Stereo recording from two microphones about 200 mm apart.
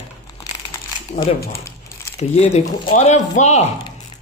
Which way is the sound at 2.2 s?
30° left (ahead or behind).